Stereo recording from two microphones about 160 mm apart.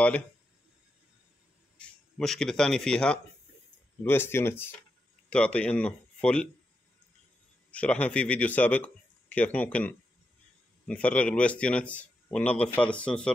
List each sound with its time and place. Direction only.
1.8 s a man's voice: 5° left (ahead or behind)
7.7 s a man's voice: 10° left (ahead or behind)